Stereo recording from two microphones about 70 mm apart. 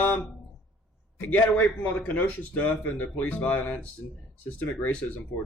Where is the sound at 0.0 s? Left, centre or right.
Left.